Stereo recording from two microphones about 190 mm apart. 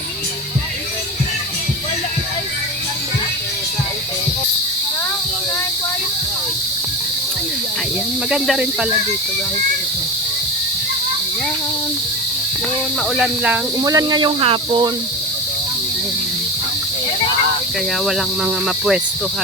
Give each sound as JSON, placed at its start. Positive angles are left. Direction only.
{"t": 8.3, "sound": "cricket", "side_deg": -5}
{"t": 13.1, "sound": "cricket", "side_deg": -5}
{"t": 13.8, "sound": "speech", "side_deg": -20}
{"t": 18.0, "sound": "cricket", "side_deg": 0}